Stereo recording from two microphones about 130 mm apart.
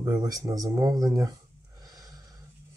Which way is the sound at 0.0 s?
30° right (ahead or behind).